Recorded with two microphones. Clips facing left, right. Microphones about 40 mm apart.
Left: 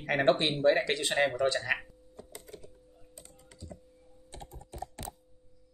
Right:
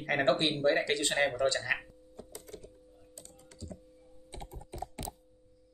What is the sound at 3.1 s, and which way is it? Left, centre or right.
Typing, left.